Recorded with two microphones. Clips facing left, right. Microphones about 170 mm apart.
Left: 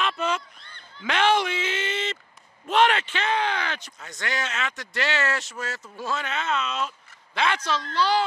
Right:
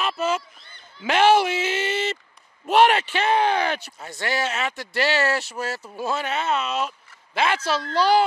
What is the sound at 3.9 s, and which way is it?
Speech, 30° right (ahead or behind).